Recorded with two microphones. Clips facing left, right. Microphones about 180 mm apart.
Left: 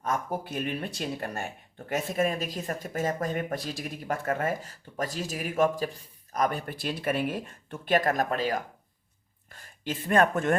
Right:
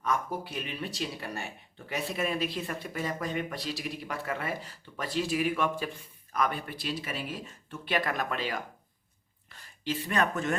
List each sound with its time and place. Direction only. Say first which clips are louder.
0.0 s speech: left 1 dB; 45° left (ahead or behind)